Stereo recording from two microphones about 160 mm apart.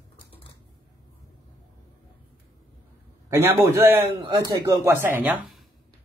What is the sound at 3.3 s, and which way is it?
Speech, 15° right (ahead or behind).